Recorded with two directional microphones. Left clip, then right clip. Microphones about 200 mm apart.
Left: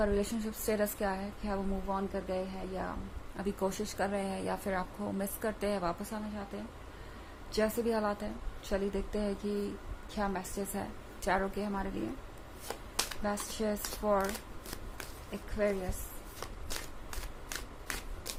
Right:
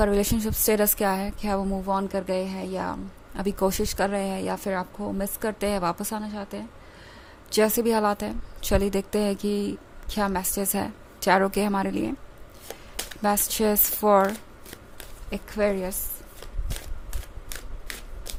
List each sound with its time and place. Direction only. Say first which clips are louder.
0.0 s a woman's voice: right 9 dB; 50° right (ahead or behind)
3.3 s speech: right 10 dB; 40° right (ahead or behind)
7.5 s a woman's voice: right 10 dB; 50° right (ahead or behind)
13.2 s speech: right 15 dB; 55° right (ahead or behind)
15.3 s speech: right 8 dB; 55° right (ahead or behind)